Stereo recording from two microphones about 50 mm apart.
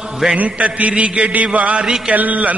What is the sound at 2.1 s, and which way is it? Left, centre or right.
Speech, right.